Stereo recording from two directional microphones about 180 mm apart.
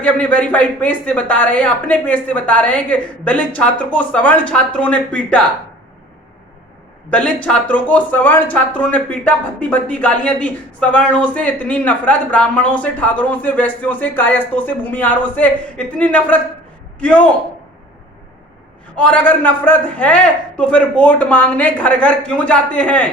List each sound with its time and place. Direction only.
0.0 s speech: 10° left (ahead or behind)
7.4 s speech: 5° left (ahead or behind)
18.9 s speech: 10° left (ahead or behind)